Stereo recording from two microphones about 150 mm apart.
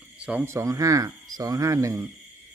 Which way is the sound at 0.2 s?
10° right (ahead or behind).